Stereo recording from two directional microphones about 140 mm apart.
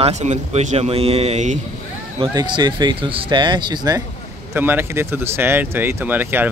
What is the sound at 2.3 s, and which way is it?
Speech, 30° right (ahead or behind).